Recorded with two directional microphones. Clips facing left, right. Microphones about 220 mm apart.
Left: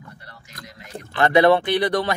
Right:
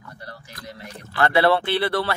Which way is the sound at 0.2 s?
35° right (ahead or behind).